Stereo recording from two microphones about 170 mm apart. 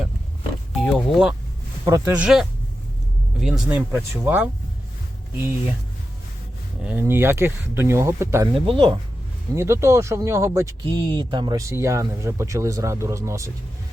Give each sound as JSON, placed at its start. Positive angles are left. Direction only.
{"t": 0.8, "sound": "speech", "side_deg": 5}
{"t": 1.8, "sound": "speech", "side_deg": -15}
{"t": 6.8, "sound": "speech", "side_deg": -10}
{"t": 8.6, "sound": "speech", "side_deg": -30}
{"t": 9.6, "sound": "speech", "side_deg": -15}
{"t": 10.8, "sound": "speech", "side_deg": -25}